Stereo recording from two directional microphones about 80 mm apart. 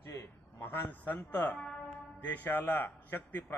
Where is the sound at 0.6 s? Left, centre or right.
Left.